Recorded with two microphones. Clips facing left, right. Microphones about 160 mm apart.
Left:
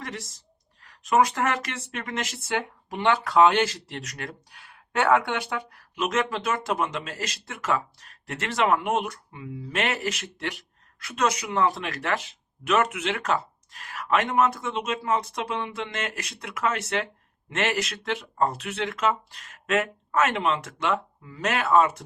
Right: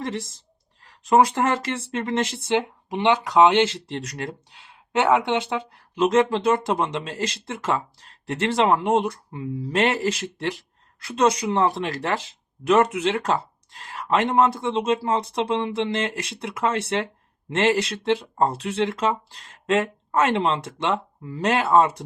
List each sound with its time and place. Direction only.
0.0 s speech: 30° right (ahead or behind)